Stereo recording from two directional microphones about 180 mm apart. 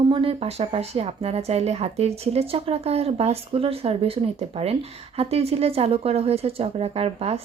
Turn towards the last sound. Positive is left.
turn(degrees=-35)  # may be behind; listen again after turning